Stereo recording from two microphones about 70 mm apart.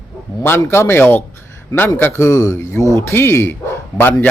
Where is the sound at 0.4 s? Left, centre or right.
Left.